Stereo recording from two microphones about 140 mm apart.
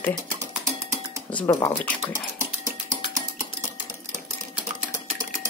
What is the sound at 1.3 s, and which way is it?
Speech, 20° left (ahead or behind).